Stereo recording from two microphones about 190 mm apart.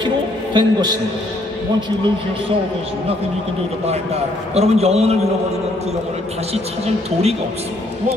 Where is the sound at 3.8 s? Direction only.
35° right (ahead or behind).